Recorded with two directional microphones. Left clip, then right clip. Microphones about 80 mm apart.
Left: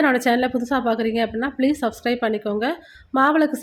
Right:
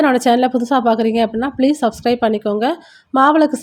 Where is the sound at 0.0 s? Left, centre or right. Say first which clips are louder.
Right 5 dB; right.